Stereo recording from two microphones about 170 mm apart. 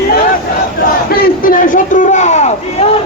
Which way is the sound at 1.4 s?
55° left (ahead or behind).